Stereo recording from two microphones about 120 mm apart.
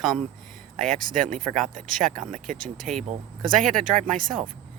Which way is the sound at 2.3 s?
90° right.